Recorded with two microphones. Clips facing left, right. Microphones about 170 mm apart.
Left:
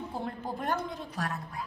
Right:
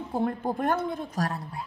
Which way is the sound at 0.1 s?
50° right (ahead or behind).